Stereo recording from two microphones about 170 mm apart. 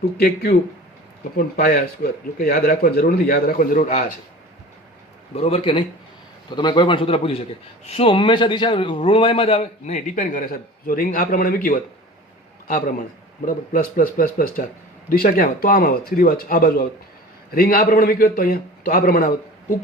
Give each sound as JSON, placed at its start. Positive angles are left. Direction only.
{"t": 1.4, "sound": "a man's voice", "side_deg": 60}
{"t": 5.3, "sound": "a man's voice", "side_deg": 35}